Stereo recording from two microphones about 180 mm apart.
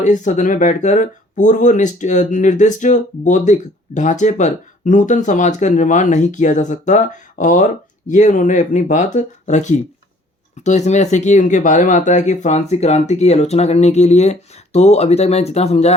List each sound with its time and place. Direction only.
0.0 s speech: 45° left (ahead or behind)